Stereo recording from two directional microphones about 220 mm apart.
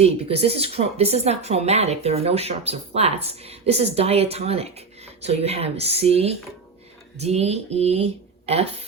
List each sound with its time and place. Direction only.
0.0 s speech: 25° right (ahead or behind)